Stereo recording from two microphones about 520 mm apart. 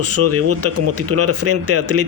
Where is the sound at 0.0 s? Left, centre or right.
Right.